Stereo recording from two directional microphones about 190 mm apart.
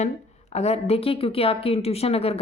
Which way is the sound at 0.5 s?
35° left (ahead or behind).